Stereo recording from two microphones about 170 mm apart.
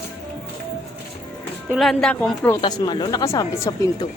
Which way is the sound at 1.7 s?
Centre (ahead or behind).